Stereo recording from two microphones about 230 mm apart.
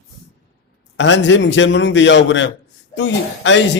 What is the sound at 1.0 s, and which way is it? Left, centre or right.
A man's voice, left.